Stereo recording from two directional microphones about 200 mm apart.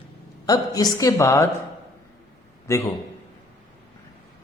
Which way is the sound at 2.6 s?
15° left (ahead or behind).